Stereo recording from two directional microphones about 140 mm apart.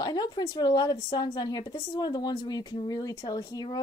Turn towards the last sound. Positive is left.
turn(degrees=25)  # may be behind; listen again after turning